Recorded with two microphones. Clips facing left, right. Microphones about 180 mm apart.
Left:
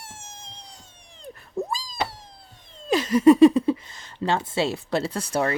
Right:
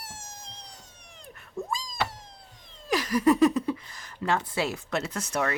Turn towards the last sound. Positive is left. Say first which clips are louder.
# left 4 dB
turn(degrees=30)  # may be behind; listen again after turning